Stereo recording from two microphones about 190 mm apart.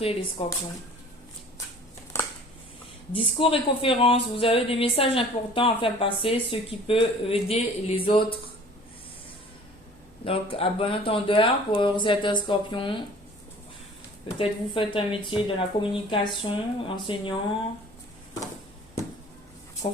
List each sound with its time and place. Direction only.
0.4 s speech: 30° left (ahead or behind)
3.1 s speech: 30° left (ahead or behind)
10.2 s speech: 30° left (ahead or behind)
14.3 s speech: 25° left (ahead or behind)
19.8 s speech: 25° left (ahead or behind)